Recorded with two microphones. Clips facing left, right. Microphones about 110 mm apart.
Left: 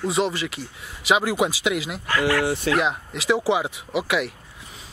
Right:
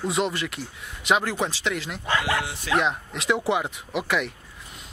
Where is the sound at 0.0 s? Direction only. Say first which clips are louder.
Left 2 dB; centre (ahead or behind).